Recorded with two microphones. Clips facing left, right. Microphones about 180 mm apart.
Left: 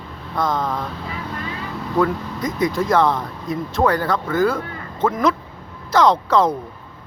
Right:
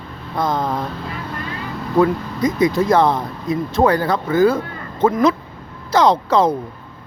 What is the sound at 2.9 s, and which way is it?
Speech, 35° right (ahead or behind).